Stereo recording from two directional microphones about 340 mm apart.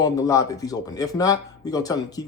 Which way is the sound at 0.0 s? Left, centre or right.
Centre.